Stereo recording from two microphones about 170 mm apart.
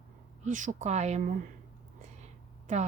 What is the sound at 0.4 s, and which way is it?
Speech, 50° right (ahead or behind).